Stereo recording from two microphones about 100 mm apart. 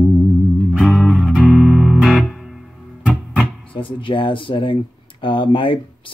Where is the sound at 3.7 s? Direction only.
60° left (ahead or behind).